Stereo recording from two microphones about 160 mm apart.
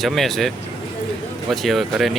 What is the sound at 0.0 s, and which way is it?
Speech, centre (ahead or behind).